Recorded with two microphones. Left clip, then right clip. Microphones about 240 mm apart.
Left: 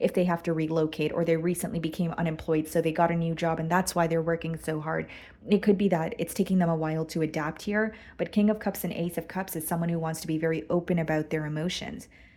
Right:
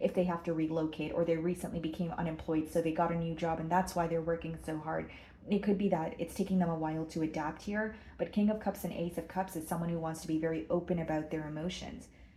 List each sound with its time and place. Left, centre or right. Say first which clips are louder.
0.0 s speech: left 6 dB; left